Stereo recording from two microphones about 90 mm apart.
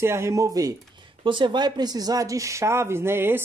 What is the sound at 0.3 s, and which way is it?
Speech, 40° right (ahead or behind).